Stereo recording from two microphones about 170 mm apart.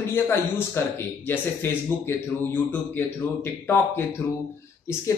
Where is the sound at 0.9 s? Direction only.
10° left (ahead or behind).